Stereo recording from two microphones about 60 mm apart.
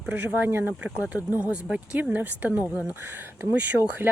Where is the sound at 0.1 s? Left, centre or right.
Right.